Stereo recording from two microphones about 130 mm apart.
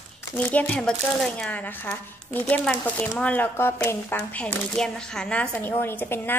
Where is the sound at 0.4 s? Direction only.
10° left (ahead or behind).